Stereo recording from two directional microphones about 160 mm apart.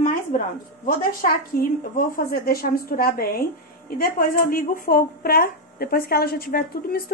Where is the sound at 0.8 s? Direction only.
65° left (ahead or behind).